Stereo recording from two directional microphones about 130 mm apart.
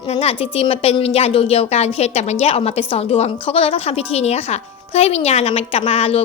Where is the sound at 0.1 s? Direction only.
50° left (ahead or behind).